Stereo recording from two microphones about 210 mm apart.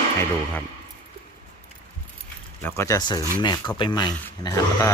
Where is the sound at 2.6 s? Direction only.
10° left (ahead or behind).